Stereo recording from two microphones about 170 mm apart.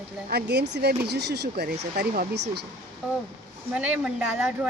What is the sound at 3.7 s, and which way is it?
Speech, 5° right (ahead or behind).